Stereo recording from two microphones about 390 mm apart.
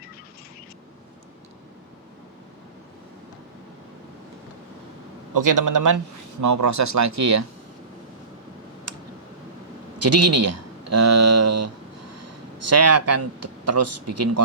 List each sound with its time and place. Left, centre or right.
5.3 s speech: right
10.0 s speech: right